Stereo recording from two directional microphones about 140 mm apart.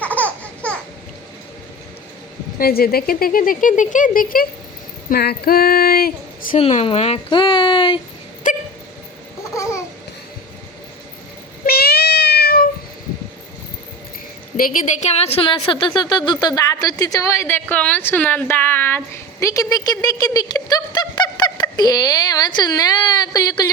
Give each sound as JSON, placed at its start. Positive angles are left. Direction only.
{"t": 0.2, "sound": "a sound", "side_deg": 10}
{"t": 2.6, "sound": "speech", "side_deg": 90}
{"t": 5.0, "sound": "a sound", "side_deg": 90}
{"t": 6.6, "sound": "speech", "side_deg": 45}
{"t": 9.4, "sound": "babbling", "side_deg": 20}
{"t": 11.6, "sound": "meow", "side_deg": 90}
{"t": 12.4, "sound": "cat", "side_deg": 90}
{"t": 14.5, "sound": "a woman's voice", "side_deg": 85}
{"t": 15.1, "sound": "a woman's voice", "side_deg": 50}